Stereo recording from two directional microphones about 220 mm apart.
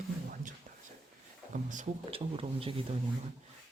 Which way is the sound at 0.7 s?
35° right (ahead or behind).